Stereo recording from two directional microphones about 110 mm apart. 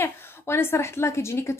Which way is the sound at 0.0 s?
20° left (ahead or behind).